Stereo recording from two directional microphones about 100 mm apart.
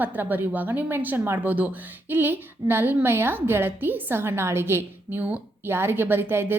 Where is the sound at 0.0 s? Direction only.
20° right (ahead or behind).